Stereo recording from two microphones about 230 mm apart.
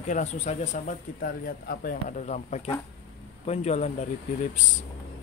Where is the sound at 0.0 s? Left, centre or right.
Left.